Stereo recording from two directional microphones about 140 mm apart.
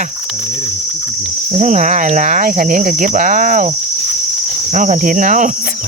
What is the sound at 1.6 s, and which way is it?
Cricket, 60° right (ahead or behind).